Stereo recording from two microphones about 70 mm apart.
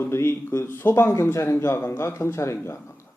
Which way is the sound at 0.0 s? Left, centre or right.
Left.